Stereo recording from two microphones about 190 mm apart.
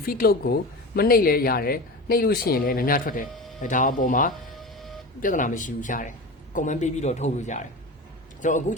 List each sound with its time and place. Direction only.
0.0 s speech: 50° left (ahead or behind)
4.5 s printer: centre (ahead or behind)
5.2 s a man's voice: 45° left (ahead or behind)